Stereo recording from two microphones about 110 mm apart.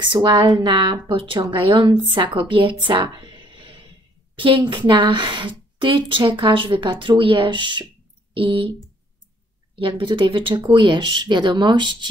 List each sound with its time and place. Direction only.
0.0 s a woman's voice: 45° right (ahead or behind)
9.8 s a woman's voice: 50° right (ahead or behind)